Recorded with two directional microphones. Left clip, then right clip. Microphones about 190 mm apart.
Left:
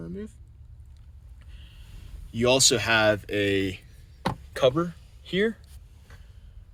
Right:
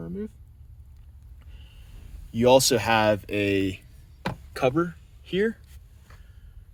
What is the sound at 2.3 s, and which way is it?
Speech, 50° right (ahead or behind).